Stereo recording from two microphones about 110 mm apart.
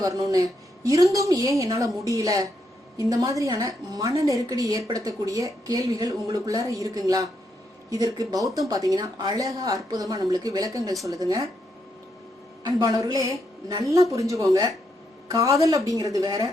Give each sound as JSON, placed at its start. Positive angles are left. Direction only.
{"t": 0.0, "sound": "speech", "side_deg": -30}
{"t": 12.6, "sound": "a woman's voice", "side_deg": -35}